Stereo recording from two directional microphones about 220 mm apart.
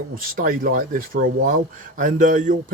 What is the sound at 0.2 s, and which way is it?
A man's voice, 40° right (ahead or behind).